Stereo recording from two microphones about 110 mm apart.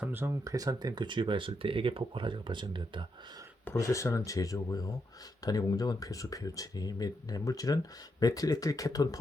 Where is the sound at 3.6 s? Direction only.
30° left (ahead or behind).